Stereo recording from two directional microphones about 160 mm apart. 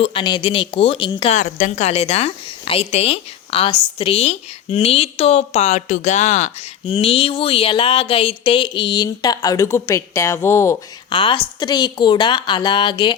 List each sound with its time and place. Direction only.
0.0 s speech: 35° left (ahead or behind)
1.3 s speech: 50° left (ahead or behind); by 10.8 s 15° left (ahead or behind)
11.1 s a woman's voice: 30° left (ahead or behind)